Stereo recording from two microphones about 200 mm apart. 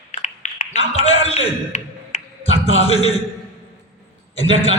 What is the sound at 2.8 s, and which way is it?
Speech, 30° left (ahead or behind).